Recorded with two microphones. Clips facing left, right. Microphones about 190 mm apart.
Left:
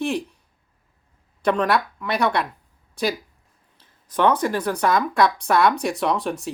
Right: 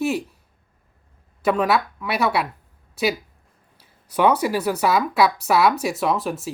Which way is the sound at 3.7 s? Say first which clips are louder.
Right 1 dB; 10° right (ahead or behind).